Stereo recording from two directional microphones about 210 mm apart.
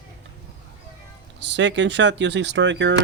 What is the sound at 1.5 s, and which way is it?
Speech, 60° right (ahead or behind).